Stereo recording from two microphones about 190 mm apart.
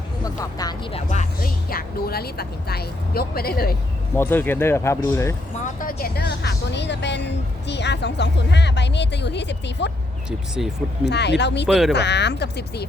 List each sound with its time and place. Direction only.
0.6 s speech: 25° left (ahead or behind); by 3.8 s 55° left (ahead or behind)
4.1 s speech: 10° left (ahead or behind)
5.5 s a woman's voice: 45° left (ahead or behind); by 9.9 s 65° left (ahead or behind)
10.2 s speech: 5° right (ahead or behind)
11.0 s a woman's voice: 65° left (ahead or behind)
11.7 s speech: centre (ahead or behind)
11.9 s a woman's voice: 65° left (ahead or behind)